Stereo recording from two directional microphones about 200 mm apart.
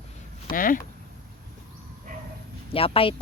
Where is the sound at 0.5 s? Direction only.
45° left (ahead or behind).